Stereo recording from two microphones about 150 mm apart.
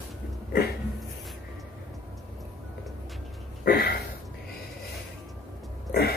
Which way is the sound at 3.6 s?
75° left (ahead or behind).